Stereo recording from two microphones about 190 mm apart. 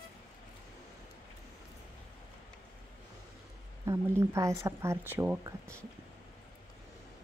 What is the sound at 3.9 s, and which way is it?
Speech, 15° right (ahead or behind).